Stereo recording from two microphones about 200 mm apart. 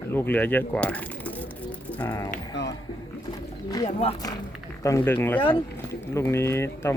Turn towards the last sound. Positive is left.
turn(degrees=15)  # may be behind; listen again after turning